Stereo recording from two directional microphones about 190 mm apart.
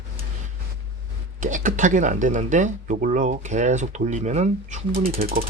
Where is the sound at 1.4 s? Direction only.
45° right (ahead or behind).